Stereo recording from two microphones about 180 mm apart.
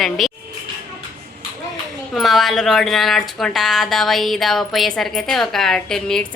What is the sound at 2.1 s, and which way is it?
Speech, centre (ahead or behind).